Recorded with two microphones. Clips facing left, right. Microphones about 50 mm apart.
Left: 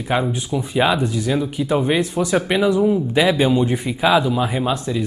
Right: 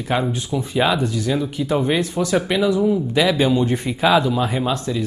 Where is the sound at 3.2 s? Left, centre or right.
Centre.